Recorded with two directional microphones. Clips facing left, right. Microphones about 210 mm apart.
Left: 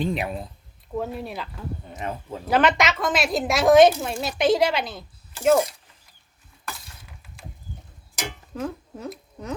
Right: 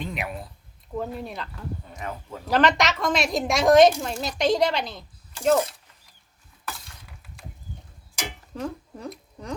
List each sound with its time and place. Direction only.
0.0 s speech: 30° left (ahead or behind)
0.9 s a woman's voice: 5° left (ahead or behind)
2.0 s speech: 25° left (ahead or behind)
2.5 s a woman's voice: centre (ahead or behind)
8.5 s speech: 5° left (ahead or behind)